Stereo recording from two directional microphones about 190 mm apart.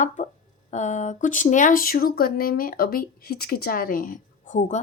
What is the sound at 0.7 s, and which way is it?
Speech, 40° left (ahead or behind).